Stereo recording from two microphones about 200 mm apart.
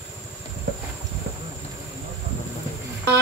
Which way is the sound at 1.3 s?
50° right (ahead or behind).